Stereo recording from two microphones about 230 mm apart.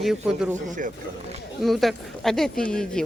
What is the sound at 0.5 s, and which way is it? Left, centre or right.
Speech, right.